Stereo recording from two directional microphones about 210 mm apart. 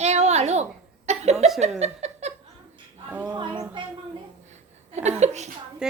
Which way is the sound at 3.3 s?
20° right (ahead or behind).